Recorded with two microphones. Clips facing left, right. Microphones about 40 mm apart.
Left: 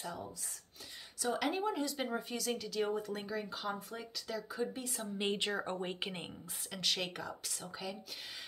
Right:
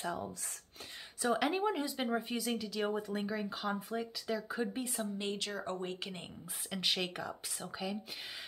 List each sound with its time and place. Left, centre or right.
0.0 s speech: right
1.4 s speech: centre
2.5 s speech: centre
4.5 s speech: right
5.1 s speech: left
6.7 s speech: centre
7.0 s speech: centre